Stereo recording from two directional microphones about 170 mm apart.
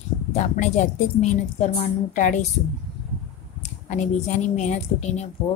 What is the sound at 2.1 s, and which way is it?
Speech, 50° left (ahead or behind).